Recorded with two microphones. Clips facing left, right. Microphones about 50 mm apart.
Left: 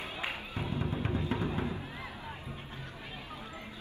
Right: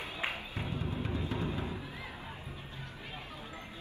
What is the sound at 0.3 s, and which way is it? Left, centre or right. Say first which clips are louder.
Music: left 2 dB; left.